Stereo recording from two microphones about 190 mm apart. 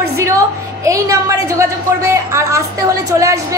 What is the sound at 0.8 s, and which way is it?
A woman's voice, 15° right (ahead or behind).